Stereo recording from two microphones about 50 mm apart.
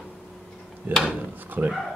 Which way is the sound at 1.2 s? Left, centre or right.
Right.